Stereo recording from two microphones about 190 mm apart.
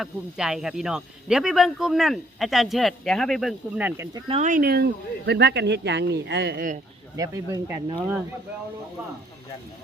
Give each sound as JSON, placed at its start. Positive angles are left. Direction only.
{"t": 0.0, "sound": "speech", "side_deg": -5}
{"t": 4.3, "sound": "speech", "side_deg": -40}
{"t": 7.2, "sound": "speech", "side_deg": -20}